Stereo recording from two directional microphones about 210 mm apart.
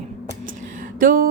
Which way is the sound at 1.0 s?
40° right (ahead or behind).